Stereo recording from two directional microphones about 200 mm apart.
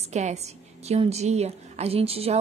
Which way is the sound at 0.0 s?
35° right (ahead or behind).